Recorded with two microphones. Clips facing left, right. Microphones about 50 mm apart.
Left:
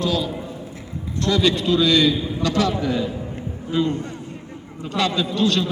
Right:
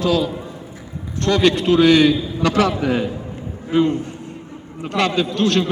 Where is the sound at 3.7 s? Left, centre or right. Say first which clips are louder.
Right 5 dB; right.